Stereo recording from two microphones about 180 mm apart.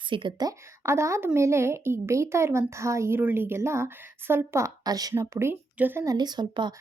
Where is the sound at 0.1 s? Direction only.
25° right (ahead or behind).